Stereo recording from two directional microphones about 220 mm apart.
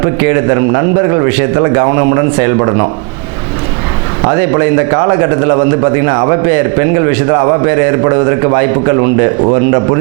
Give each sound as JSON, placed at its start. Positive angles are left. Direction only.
{"t": 0.0, "sound": "a man's voice", "side_deg": -20}
{"t": 4.3, "sound": "a man's voice", "side_deg": -20}